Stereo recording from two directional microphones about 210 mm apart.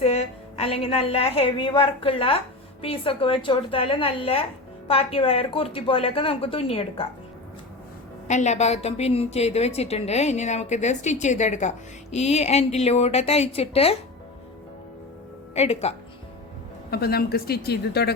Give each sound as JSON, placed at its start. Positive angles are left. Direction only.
{"t": 0.0, "sound": "a woman's voice", "side_deg": 30}
{"t": 8.3, "sound": "a woman's voice", "side_deg": 35}
{"t": 15.5, "sound": "speech", "side_deg": 30}
{"t": 16.9, "sound": "speech", "side_deg": 45}